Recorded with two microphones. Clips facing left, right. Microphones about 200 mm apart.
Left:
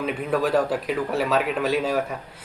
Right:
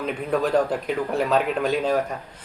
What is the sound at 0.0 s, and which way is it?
A man's voice, 5° left (ahead or behind).